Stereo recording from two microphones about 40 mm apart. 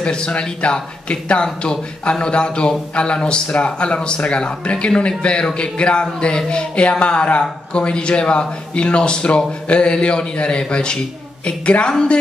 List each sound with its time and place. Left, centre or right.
0.0 s a man's voice: left